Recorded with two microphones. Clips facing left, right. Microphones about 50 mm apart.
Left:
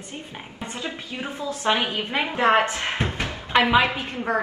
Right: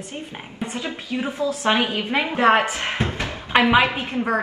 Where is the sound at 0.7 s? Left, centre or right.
Right.